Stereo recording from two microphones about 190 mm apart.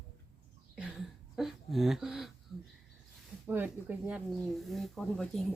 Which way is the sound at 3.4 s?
10° right (ahead or behind).